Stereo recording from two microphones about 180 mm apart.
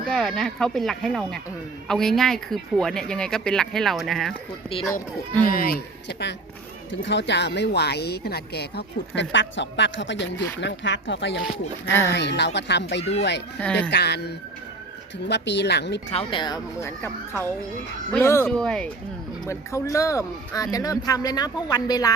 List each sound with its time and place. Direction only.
0.1 s speech: centre (ahead or behind)
5.5 s speech: 55° left (ahead or behind); by 11.3 s 90° left
11.9 s speech: 15° left (ahead or behind)
12.1 s speech: 70° left (ahead or behind)
13.0 s speech: 35° left (ahead or behind)
13.6 s speech: 5° left (ahead or behind)
13.9 s speech: 65° left (ahead or behind)
16.0 s speech: 30° left (ahead or behind)
16.8 s speech: 15° left (ahead or behind)
19.5 s speech: 15° left (ahead or behind)